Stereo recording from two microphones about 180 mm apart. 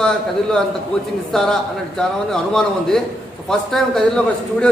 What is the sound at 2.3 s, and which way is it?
Speech, 5° left (ahead or behind).